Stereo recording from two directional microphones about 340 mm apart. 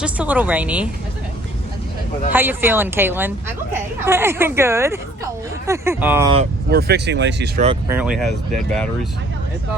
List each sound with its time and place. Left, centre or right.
0.0 s a woman's voice: centre
2.3 s a woman's voice: centre
6.3 s speech: right
7.9 s a woman's voice: centre